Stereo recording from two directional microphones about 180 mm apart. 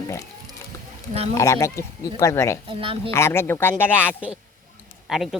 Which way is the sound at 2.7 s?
30° right (ahead or behind).